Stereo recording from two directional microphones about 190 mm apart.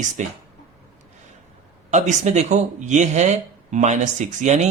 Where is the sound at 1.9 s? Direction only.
40° right (ahead or behind).